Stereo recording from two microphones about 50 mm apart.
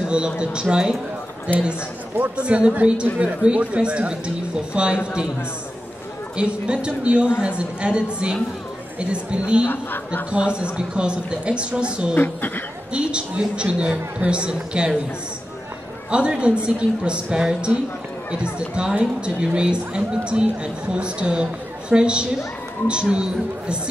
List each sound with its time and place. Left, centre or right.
0.0 s a woman's voice: centre
6.3 s a woman's voice: centre
9.7 s speech: left
10.6 s a woman's voice: right
12.2 s speech: left
12.9 s a woman's voice: right
16.1 s a woman's voice: centre